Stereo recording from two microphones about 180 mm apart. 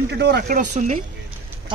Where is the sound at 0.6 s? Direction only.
45° right (ahead or behind).